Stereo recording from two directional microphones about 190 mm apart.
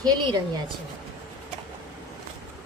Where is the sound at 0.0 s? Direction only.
20° right (ahead or behind).